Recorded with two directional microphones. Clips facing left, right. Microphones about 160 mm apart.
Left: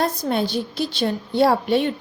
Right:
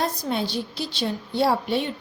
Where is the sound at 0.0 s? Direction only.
50° left (ahead or behind).